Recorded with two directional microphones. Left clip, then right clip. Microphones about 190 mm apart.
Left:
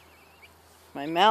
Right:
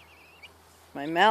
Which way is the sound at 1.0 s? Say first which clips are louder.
Even; 5° left (ahead or behind).